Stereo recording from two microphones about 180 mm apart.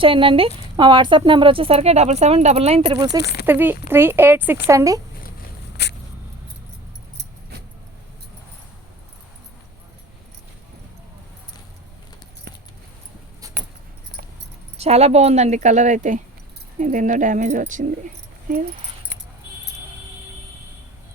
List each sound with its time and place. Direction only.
0.0 s speech: 30° right (ahead or behind)
3.4 s speech: 10° right (ahead or behind)
5.8 s a sound: 70° left (ahead or behind)
14.8 s speech: 35° right (ahead or behind)